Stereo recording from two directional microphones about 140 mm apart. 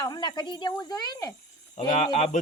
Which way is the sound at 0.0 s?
30° left (ahead or behind).